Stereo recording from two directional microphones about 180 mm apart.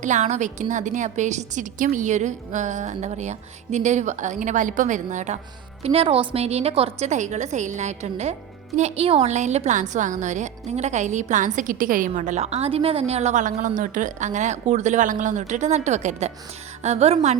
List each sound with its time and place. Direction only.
0.0 s a woman's voice: 40° right (ahead or behind)